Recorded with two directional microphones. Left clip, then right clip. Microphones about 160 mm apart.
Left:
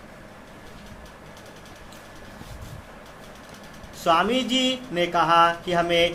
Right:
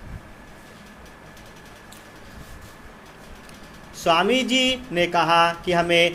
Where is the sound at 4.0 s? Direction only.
35° right (ahead or behind).